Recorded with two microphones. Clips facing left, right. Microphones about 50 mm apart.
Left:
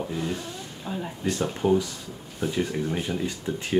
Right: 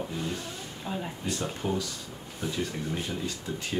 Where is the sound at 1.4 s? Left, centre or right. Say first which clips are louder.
Left 9 dB; centre.